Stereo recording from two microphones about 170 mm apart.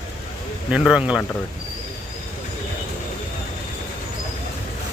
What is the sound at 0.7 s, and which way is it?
Speech, 5° right (ahead or behind).